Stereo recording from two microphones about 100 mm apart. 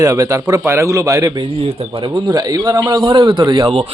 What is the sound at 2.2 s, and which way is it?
Speech, 45° right (ahead or behind).